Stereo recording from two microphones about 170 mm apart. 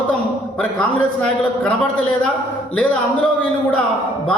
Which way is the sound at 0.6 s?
5° left (ahead or behind).